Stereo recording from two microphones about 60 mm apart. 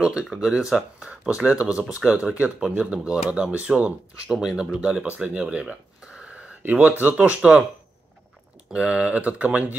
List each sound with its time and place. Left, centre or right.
0.0 s speech: centre
4.3 s speech: centre
6.6 s speech: right
8.7 s speech: centre